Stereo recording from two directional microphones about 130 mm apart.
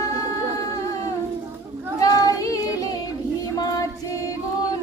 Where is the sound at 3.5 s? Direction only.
30° left (ahead or behind).